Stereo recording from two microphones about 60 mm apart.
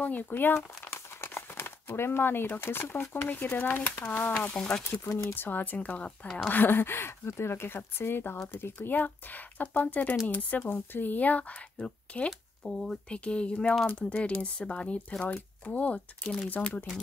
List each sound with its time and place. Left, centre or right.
0.0 s speech: left
0.8 s crumpling: left
3.3 s speech: left
4.3 s speech: centre
5.3 s speech: left; by 6.5 s centre
6.5 s speech: left
12.6 s speech: centre